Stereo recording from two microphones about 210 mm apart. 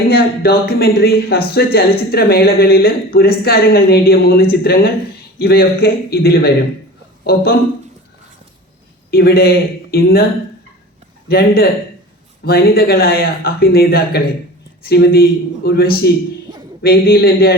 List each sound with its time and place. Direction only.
0.1 s a man's voice: 50° left (ahead or behind)
9.0 s a man's voice: 45° left (ahead or behind)
11.3 s a man's voice: 45° left (ahead or behind)